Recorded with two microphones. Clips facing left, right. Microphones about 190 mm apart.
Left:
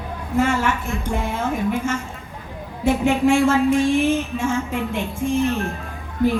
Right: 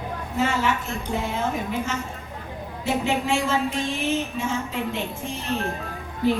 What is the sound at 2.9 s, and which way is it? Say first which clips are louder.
Speech: left 7 dB; 50° left (ahead or behind).